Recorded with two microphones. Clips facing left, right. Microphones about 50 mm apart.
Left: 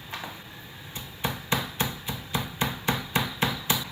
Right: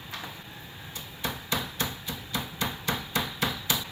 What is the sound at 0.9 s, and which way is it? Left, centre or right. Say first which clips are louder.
Hammer: left 3 dB; left.